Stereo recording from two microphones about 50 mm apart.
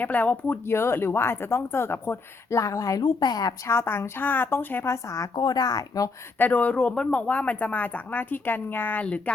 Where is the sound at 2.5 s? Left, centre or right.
Left.